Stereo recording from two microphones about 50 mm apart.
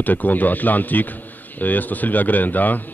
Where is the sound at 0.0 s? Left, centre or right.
Left.